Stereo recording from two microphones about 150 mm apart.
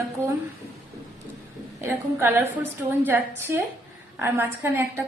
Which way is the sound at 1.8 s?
15° right (ahead or behind).